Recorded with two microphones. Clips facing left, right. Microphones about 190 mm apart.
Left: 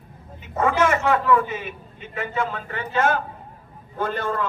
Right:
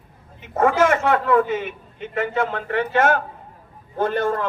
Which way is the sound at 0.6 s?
55° right (ahead or behind).